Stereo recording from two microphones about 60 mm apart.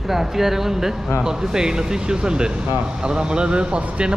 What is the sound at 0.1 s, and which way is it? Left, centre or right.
Speech, centre.